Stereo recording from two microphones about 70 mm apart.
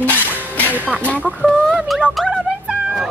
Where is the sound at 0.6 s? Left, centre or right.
Right.